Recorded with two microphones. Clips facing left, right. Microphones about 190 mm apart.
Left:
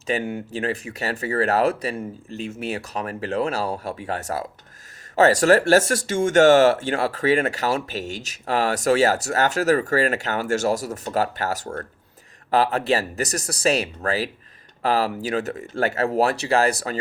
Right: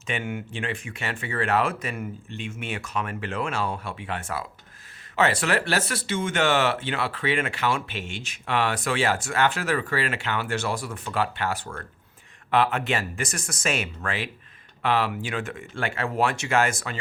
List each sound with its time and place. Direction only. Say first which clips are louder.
0.1 s speech: left 6 dB; 35° left (ahead or behind)